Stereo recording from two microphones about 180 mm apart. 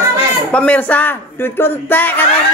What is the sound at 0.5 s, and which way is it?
Speech, 10° left (ahead or behind).